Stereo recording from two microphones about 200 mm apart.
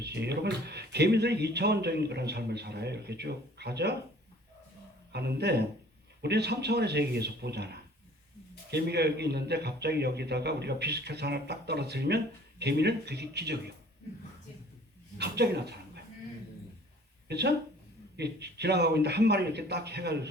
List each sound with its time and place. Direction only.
0.0 s a man's voice: 55° right (ahead or behind)
5.1 s a man's voice: 55° right (ahead or behind)
15.2 s a man's voice: 55° right (ahead or behind)
17.2 s a man's voice: 55° right (ahead or behind)